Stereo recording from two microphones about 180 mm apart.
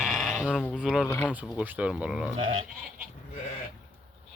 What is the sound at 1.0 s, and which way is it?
Speech, 10° left (ahead or behind).